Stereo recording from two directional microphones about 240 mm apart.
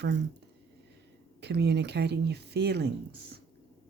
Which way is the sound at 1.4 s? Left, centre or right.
Right.